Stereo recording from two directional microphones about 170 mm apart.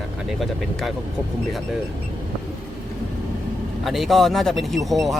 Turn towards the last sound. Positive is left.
turn(degrees=0)  # may be behind; listen again after turning